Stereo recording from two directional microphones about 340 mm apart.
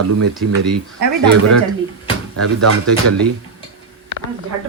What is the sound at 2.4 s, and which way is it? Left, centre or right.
Speech, right.